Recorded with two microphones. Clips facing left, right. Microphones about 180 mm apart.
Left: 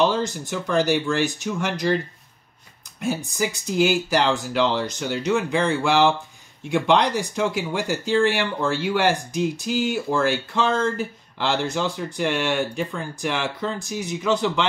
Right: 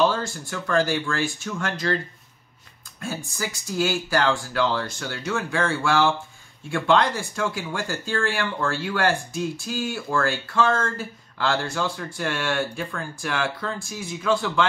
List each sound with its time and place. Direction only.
0.0 s speech: 20° left (ahead or behind)
3.0 s speech: 20° left (ahead or behind)